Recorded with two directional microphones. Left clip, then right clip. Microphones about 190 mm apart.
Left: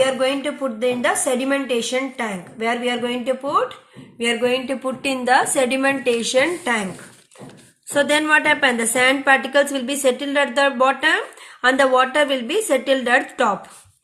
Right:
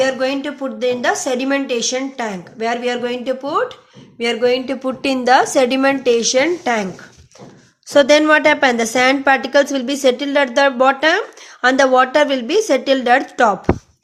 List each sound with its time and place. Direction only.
0.0 s a woman's voice: 45° right (ahead or behind)
7.9 s a woman's voice: 50° right (ahead or behind)